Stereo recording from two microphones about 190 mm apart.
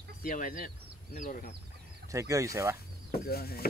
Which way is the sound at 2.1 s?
15° right (ahead or behind).